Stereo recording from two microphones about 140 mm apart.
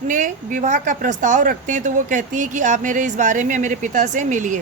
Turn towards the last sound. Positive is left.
turn(degrees=-65)  # may be behind; listen again after turning